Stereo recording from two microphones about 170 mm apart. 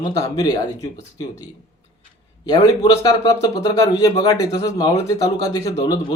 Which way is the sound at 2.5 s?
20° left (ahead or behind).